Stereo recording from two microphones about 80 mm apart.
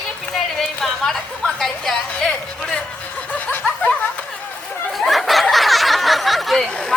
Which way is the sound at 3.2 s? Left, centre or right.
Centre.